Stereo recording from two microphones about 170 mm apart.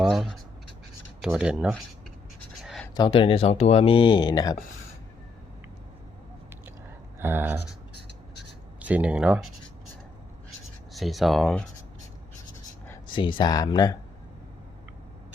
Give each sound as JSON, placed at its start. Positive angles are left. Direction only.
{"t": 0.0, "sound": "scratch", "side_deg": 0}
{"t": 1.2, "sound": "speech", "side_deg": -5}
{"t": 2.6, "sound": "writing", "side_deg": 0}
{"t": 2.9, "sound": "speech", "side_deg": 30}
{"t": 7.2, "sound": "speech", "side_deg": -15}
{"t": 8.8, "sound": "speech", "side_deg": -10}
{"t": 10.9, "sound": "speech", "side_deg": 0}
{"t": 13.1, "sound": "speech", "side_deg": 25}